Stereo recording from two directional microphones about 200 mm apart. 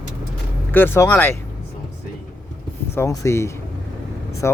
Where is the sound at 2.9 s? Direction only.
15° left (ahead or behind).